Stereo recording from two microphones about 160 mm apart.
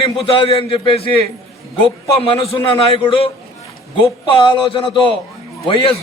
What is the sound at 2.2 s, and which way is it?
A man's voice, 35° left (ahead or behind).